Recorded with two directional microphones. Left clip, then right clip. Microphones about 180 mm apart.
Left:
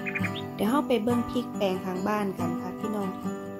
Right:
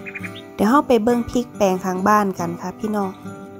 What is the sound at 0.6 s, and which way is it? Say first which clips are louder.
Speech: right 10 dB; 40° right (ahead or behind).